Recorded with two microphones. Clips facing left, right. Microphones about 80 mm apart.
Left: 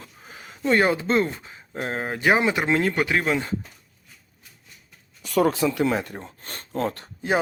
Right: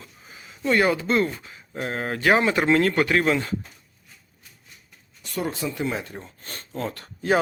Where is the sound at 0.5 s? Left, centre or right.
Left.